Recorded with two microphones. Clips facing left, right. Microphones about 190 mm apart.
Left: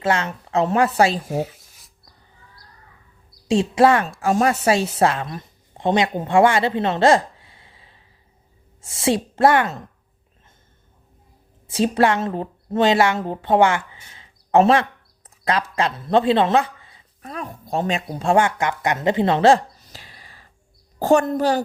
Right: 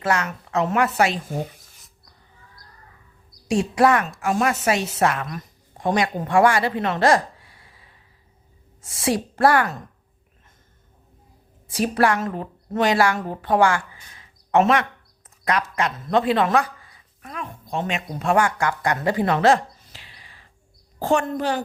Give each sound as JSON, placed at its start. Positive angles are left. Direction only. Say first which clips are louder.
{"t": 0.0, "sound": "speech", "louder": "left 2 dB", "side_deg": 25}
{"t": 1.3, "sound": "writing", "louder": "left 4 dB", "side_deg": 5}
{"t": 3.5, "sound": "a woman's voice", "louder": "left 2 dB", "side_deg": 25}
{"t": 11.7, "sound": "a woman's voice", "louder": "left 2 dB", "side_deg": 25}
{"t": 17.3, "sound": "speech", "louder": "left 3 dB", "side_deg": 40}